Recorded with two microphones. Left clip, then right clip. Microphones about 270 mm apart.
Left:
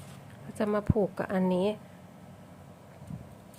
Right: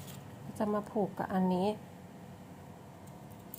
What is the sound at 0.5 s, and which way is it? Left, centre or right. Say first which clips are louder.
A woman's voice: left 5 dB; left.